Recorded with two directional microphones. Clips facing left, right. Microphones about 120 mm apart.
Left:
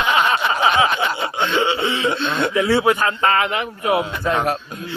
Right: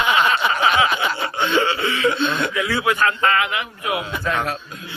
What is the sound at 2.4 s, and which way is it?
A man's voice, 30° left (ahead or behind).